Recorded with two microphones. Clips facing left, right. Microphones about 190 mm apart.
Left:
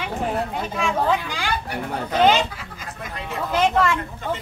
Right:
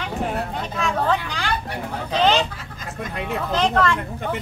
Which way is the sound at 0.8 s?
10° left (ahead or behind).